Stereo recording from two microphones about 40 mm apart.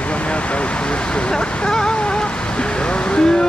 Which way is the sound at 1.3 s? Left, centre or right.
Centre.